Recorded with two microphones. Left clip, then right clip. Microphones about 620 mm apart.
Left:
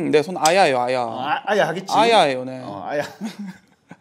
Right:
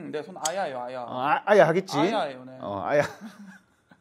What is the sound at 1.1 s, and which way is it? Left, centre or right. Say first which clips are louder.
Speech: right 6 dB; right.